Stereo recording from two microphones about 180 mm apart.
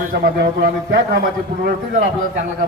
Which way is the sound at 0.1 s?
55° right (ahead or behind).